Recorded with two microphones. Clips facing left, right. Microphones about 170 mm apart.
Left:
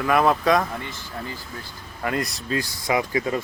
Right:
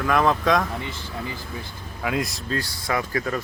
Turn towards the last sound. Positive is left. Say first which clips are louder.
# left 2 dB
turn(degrees=20)  # may be behind; listen again after turning